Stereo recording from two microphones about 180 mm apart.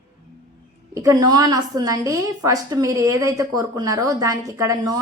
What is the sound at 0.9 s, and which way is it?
A woman's voice, 20° right (ahead or behind).